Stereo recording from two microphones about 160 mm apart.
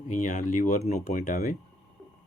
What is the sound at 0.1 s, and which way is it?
Speech, 50° left (ahead or behind).